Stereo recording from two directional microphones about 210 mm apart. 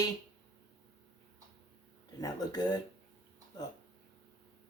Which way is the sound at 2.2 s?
20° left (ahead or behind).